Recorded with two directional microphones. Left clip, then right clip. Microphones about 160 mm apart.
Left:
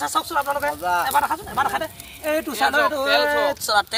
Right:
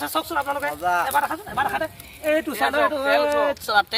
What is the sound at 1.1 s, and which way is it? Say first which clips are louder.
Speech: left 2 dB; 40° right (ahead or behind).